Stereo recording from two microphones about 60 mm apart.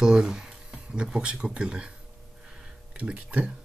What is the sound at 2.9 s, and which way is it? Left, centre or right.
Speech, centre.